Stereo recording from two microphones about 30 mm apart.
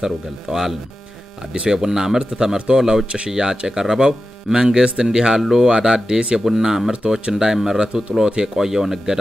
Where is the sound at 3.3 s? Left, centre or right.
Right.